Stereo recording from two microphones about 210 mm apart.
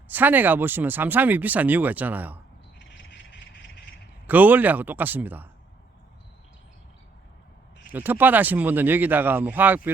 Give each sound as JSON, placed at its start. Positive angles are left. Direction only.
{"t": 0.1, "sound": "speech", "side_deg": -10}
{"t": 2.7, "sound": "a sound", "side_deg": 55}
{"t": 4.3, "sound": "speech", "side_deg": -10}
{"t": 7.9, "sound": "speech", "side_deg": -10}